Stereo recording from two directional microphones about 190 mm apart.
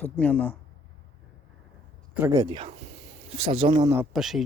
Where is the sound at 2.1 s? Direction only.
15° right (ahead or behind).